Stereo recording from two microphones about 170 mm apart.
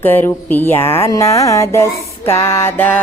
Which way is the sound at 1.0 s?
20° left (ahead or behind).